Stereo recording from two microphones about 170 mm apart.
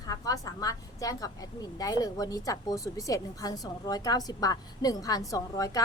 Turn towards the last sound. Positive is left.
turn(degrees=20)  # may be behind; listen again after turning